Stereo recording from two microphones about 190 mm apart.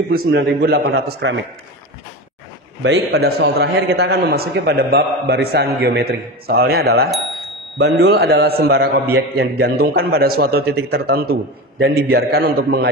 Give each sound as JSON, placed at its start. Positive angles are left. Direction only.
{"t": 0.1, "sound": "a man's voice", "side_deg": -55}
{"t": 2.8, "sound": "a man's voice", "side_deg": -65}